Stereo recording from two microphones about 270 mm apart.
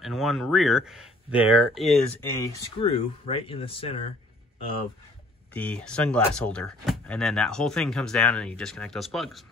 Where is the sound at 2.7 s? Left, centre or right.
Centre.